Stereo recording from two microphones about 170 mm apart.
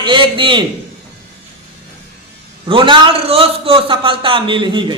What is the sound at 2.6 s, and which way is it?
A man's voice, 30° right (ahead or behind).